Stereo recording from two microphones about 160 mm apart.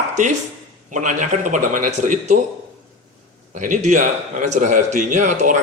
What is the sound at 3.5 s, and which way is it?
A man's voice, 50° right (ahead or behind).